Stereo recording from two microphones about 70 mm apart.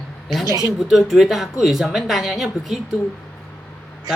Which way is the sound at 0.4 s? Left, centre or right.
Right.